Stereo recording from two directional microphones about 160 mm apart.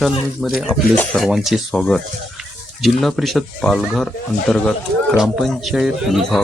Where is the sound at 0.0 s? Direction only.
Centre (ahead or behind).